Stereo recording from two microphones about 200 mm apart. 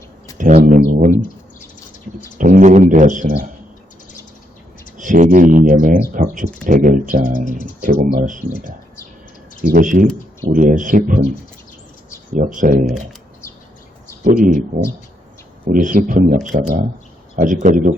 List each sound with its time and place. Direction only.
0.3 s a sound: 40° right (ahead or behind)
2.4 s speech: 40° right (ahead or behind)
4.9 s speech: 40° right (ahead or behind)
12.5 s speech: 40° right (ahead or behind)
14.3 s speech: 40° right (ahead or behind)
15.7 s speech: 40° right (ahead or behind)